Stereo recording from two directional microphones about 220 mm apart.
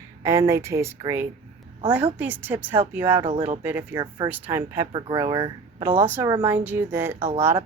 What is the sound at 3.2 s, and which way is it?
Speech, 30° right (ahead or behind).